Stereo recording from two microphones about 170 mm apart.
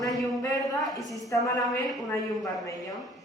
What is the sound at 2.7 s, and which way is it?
Speech, 20° left (ahead or behind).